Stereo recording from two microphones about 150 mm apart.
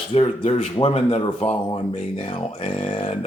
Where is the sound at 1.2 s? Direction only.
30° left (ahead or behind).